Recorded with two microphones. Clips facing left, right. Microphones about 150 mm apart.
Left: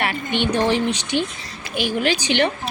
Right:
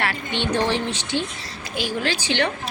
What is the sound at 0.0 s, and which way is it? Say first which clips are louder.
A woman's voice: left 3 dB; 15° left (ahead or behind).